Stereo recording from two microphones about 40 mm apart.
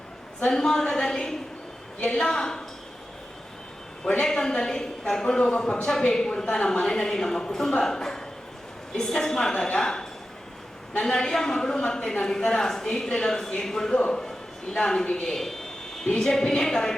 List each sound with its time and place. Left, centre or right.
0.4 s a man's voice: centre
4.0 s a woman's voice: centre
5.4 s a woman's voice: left; by 15.5 s centre
16.0 s a woman's voice: left